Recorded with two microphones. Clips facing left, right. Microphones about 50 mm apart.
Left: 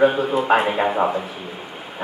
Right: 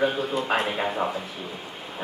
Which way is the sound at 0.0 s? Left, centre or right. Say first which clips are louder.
Left 7 dB; centre.